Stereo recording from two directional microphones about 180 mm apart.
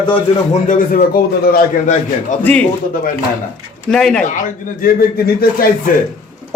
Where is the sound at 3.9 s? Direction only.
5° left (ahead or behind).